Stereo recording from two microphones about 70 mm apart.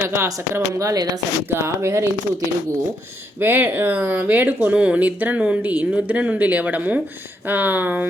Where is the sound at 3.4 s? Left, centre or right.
Right.